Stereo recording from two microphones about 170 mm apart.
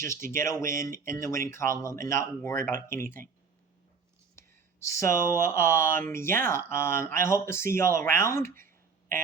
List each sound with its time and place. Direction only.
0.0 s speech: 15° left (ahead or behind)
4.4 s speech: 15° left (ahead or behind)